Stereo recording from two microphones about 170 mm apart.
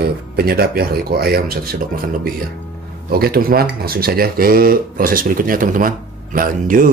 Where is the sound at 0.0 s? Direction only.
65° right (ahead or behind).